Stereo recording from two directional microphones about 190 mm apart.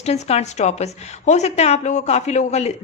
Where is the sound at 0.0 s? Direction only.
35° left (ahead or behind).